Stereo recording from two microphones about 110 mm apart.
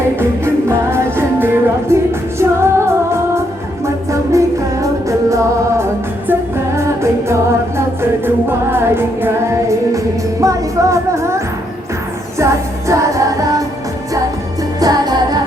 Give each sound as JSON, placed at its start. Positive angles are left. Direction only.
{"t": 0.2, "sound": "music", "side_deg": -20}
{"t": 8.4, "sound": "music", "side_deg": -20}
{"t": 12.9, "sound": "music", "side_deg": -30}
{"t": 14.8, "sound": "music", "side_deg": -35}